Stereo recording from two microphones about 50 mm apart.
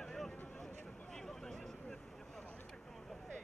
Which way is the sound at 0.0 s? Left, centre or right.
Centre.